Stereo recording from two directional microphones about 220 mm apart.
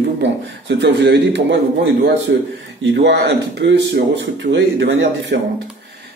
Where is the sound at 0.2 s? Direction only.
55° right (ahead or behind).